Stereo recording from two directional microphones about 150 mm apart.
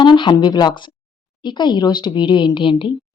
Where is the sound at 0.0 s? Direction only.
30° left (ahead or behind).